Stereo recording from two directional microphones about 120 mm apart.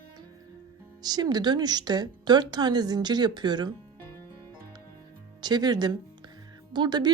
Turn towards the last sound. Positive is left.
turn(degrees=-35)  # may be behind; listen again after turning